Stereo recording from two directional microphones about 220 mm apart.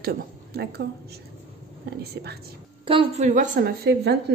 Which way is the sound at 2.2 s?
50° right (ahead or behind).